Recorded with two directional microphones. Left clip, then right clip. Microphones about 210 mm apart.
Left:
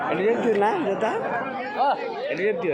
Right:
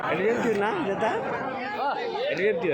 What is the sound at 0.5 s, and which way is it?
Speech, 5° left (ahead or behind).